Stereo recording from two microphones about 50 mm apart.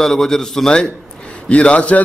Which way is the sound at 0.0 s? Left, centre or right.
Centre.